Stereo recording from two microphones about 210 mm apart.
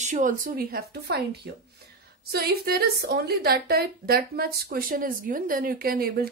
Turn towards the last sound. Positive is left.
turn(degrees=-45)  # may be behind; listen again after turning